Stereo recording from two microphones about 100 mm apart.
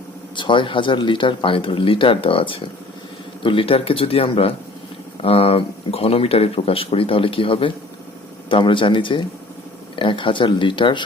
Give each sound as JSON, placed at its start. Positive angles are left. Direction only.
{"t": 0.3, "sound": "speech", "side_deg": 55}